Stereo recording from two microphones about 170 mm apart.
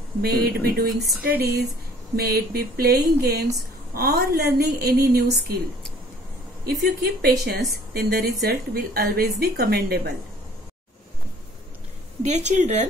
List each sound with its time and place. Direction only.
0.2 s speech: 65° right (ahead or behind)
1.4 s a woman's voice: 80° right
2.1 s a woman's voice: 65° right (ahead or behind)
7.0 s a woman's voice: 65° right (ahead or behind)
12.2 s speech: 40° right (ahead or behind)